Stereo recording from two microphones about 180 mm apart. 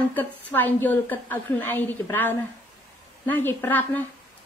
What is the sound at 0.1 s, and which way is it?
A woman's voice, 10° left (ahead or behind).